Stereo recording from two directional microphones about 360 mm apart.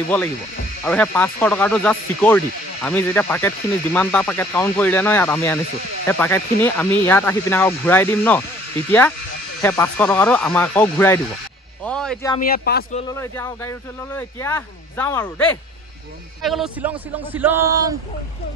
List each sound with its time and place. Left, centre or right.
0.8 s speech: centre
9.6 s speech: centre
11.8 s a sound: centre
12.4 s speech: left
13.1 s speech: centre